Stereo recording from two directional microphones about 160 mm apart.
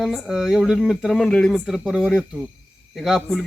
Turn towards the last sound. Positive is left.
turn(degrees=0)  # may be behind; listen again after turning